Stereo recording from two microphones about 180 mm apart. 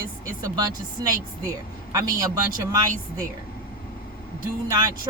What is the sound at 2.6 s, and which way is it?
Speech, 20° right (ahead or behind).